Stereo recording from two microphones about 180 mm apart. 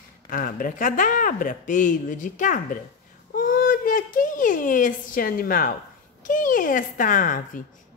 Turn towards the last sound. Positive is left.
turn(degrees=45)  # may be behind; listen again after turning